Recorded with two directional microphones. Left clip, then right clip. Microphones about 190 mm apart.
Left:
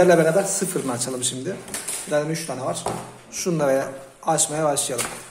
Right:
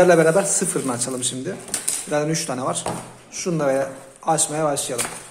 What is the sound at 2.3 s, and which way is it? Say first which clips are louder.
Speech: right 3 dB; 25° right (ahead or behind).